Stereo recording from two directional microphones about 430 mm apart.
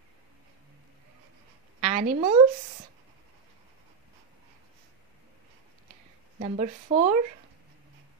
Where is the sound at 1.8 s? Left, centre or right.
Centre.